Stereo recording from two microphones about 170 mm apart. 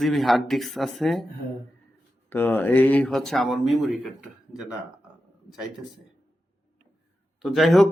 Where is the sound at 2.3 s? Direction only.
10° left (ahead or behind).